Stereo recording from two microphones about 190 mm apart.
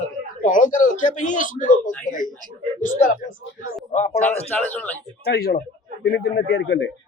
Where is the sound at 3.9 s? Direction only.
40° left (ahead or behind).